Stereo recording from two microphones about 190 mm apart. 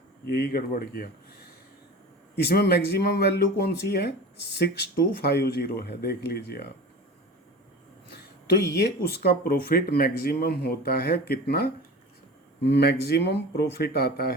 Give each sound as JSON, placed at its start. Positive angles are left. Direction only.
{"t": 0.3, "sound": "speech", "side_deg": 55}
{"t": 2.3, "sound": "speech", "side_deg": 60}
{"t": 8.1, "sound": "speech", "side_deg": 60}